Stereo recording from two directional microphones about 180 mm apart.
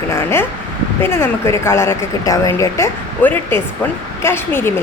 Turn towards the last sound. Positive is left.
turn(degrees=15)  # may be behind; listen again after turning